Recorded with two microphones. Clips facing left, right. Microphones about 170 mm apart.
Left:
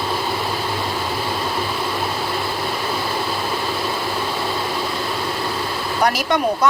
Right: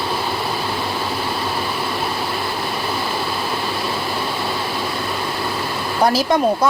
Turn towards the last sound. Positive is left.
turn(degrees=-30)  # may be behind; listen again after turning